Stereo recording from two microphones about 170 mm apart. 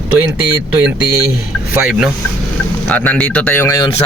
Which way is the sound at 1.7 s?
5° right (ahead or behind).